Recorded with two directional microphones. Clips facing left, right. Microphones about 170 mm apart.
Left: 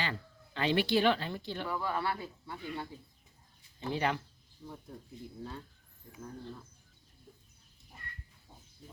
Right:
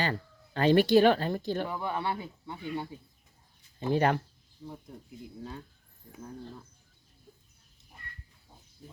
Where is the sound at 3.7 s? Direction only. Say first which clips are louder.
Right 7 dB; 50° right (ahead or behind).